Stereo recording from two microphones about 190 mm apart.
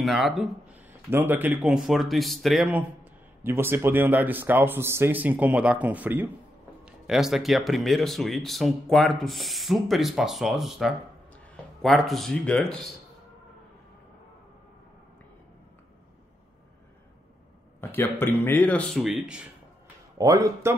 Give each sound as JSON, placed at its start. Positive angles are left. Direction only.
{"t": 0.0, "sound": "speech", "side_deg": 0}
{"t": 17.7, "sound": "speech", "side_deg": 10}
{"t": 20.2, "sound": "speech", "side_deg": -15}